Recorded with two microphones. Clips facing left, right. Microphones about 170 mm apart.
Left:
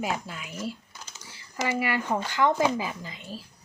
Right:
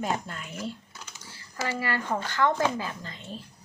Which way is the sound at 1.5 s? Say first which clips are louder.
Left 3 dB; 15° left (ahead or behind).